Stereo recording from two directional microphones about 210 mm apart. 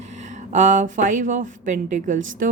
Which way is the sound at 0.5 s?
35° right (ahead or behind).